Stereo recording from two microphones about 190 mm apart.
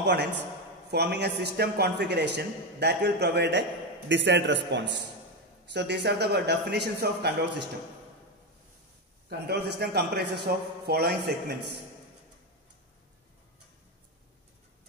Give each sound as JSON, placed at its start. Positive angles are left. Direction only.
{"t": 0.0, "sound": "a man's voice", "side_deg": -65}
{"t": 9.5, "sound": "a man's voice", "side_deg": -60}